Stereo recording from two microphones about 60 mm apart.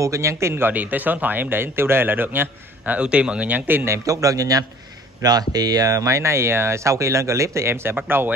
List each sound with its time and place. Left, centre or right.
0.0 s speech: right
0.7 s a man's voice: right
2.8 s speech: right
4.0 s a man's voice: right
5.2 s a man's voice: right